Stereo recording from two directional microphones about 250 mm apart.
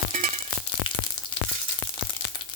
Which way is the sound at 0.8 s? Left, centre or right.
Centre.